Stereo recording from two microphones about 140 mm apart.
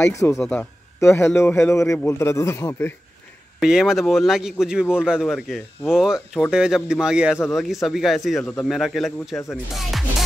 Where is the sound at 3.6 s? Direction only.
5° right (ahead or behind).